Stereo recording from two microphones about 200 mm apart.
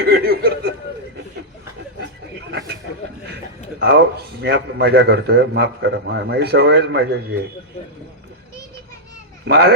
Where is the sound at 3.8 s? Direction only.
55° right (ahead or behind).